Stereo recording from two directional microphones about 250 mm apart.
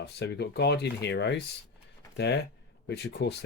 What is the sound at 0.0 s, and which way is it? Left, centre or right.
Speech, left.